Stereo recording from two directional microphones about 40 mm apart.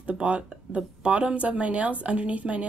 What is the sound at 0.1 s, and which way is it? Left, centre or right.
Speech, right.